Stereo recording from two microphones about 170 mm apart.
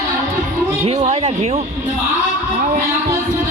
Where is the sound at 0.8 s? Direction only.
40° right (ahead or behind).